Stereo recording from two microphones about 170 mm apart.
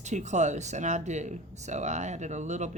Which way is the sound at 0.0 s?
45° right (ahead or behind).